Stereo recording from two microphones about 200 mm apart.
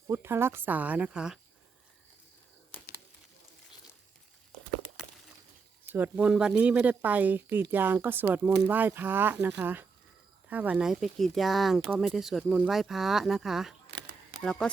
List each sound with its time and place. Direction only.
0.1 s speech: 10° right (ahead or behind)
5.9 s speech: 10° right (ahead or behind)